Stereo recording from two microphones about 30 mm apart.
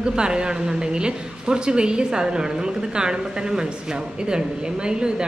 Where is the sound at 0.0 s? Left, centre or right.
Right.